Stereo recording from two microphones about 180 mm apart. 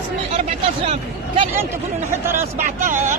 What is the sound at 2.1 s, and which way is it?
Speech, 15° right (ahead or behind).